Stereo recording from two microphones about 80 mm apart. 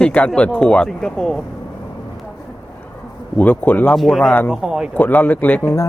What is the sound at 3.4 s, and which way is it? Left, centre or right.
Speech, left.